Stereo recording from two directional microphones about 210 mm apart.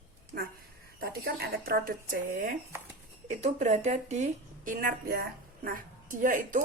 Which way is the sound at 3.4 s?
35° right (ahead or behind).